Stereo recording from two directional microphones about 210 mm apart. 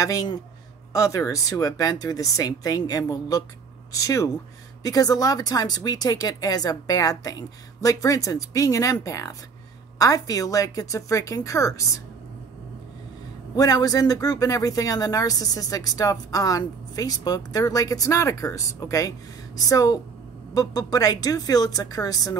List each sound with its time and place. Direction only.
0.0 s speech: 15° left (ahead or behind)
13.6 s speech: 15° left (ahead or behind)